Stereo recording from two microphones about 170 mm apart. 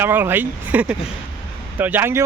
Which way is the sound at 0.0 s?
10° right (ahead or behind).